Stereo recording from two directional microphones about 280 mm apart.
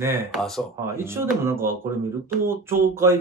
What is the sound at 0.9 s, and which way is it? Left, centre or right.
Speech, centre.